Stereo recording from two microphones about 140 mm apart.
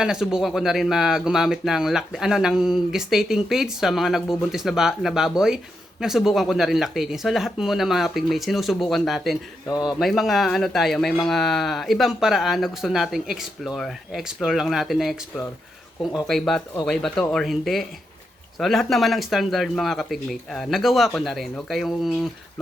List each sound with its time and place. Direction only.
0.0 s speech: 5° right (ahead or behind)
9.6 s a man's voice: 25° left (ahead or behind)
10.0 s speech: centre (ahead or behind)
16.2 s speech: 5° left (ahead or behind)